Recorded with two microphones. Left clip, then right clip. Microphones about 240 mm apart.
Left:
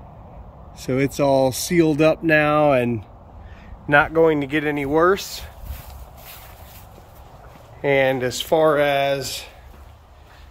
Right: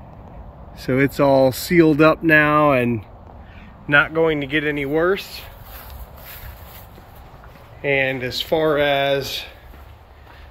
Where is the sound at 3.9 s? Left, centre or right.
Centre.